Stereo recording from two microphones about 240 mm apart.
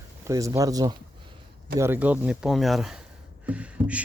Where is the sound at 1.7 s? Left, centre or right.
Centre.